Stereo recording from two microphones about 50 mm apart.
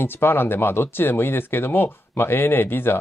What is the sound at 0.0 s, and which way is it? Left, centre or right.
Speech, left.